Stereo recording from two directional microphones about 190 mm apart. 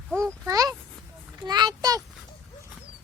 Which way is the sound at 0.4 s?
15° right (ahead or behind).